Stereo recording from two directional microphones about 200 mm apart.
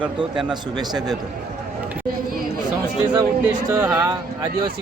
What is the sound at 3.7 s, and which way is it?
Speech, 10° right (ahead or behind).